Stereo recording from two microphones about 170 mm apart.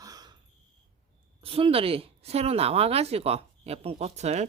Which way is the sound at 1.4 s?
35° right (ahead or behind).